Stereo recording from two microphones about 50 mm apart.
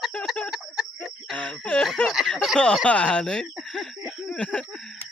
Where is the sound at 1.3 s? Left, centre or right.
Left.